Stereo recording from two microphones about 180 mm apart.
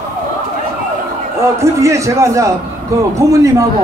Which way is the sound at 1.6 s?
15° right (ahead or behind).